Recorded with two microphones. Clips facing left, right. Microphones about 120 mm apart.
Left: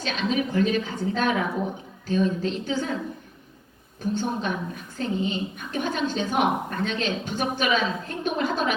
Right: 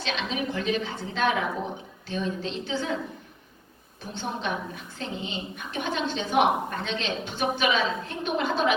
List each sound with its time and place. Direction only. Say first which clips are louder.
0.0 s a woman's voice: left 4 dB; 40° left (ahead or behind)
4.1 s a woman's voice: left 3 dB; 45° left (ahead or behind)